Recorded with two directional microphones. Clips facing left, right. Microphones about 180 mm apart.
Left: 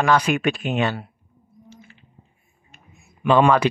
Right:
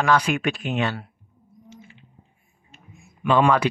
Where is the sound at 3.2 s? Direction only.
25° left (ahead or behind).